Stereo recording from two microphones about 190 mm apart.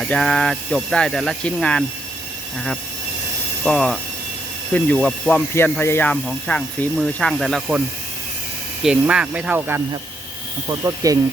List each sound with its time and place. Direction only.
0.0 s speech: 5° left (ahead or behind)
3.6 s speech: 5° left (ahead or behind)
8.8 s speech: 5° right (ahead or behind)